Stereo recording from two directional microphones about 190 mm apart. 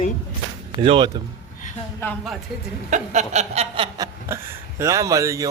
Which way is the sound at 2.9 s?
35° right (ahead or behind).